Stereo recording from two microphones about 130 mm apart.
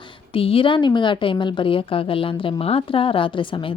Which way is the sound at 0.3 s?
45° left (ahead or behind).